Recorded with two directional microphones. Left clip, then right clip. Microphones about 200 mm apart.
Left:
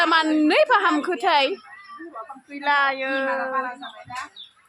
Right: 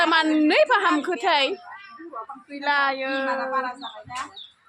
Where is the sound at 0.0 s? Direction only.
25° left (ahead or behind).